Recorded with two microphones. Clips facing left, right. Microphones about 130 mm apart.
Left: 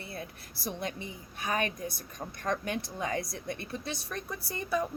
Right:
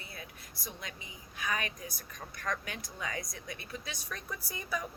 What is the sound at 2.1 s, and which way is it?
Speech, 25° left (ahead or behind).